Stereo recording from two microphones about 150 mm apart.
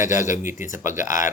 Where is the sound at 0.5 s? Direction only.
60° left (ahead or behind).